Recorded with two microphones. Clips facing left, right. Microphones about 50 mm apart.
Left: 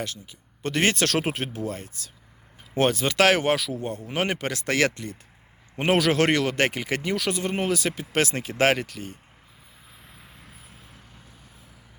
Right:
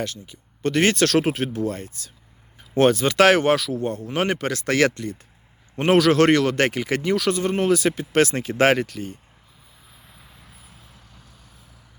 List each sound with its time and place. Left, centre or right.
0.0 s speech: centre